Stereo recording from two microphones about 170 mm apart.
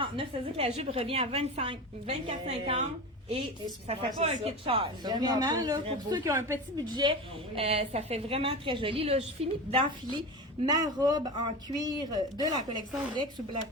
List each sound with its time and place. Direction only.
0.0 s a woman's voice: 35° right (ahead or behind)
3.8 s a woman's voice: 35° right (ahead or behind)